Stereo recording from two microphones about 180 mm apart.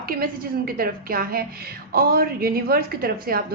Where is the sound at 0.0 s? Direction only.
55° right (ahead or behind).